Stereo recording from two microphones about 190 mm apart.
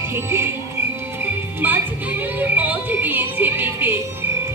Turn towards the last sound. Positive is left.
turn(degrees=-10)  # may be behind; listen again after turning